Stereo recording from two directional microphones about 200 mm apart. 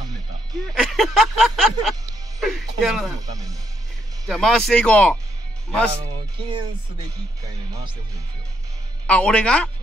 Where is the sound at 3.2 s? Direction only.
15° right (ahead or behind).